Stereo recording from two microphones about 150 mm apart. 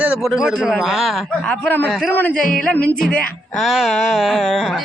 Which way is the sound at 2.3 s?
70° left (ahead or behind).